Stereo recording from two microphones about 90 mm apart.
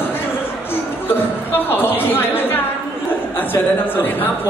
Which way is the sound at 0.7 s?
25° left (ahead or behind).